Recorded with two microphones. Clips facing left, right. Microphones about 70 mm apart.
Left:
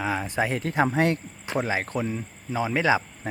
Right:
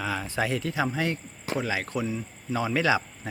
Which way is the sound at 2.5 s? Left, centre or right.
Left.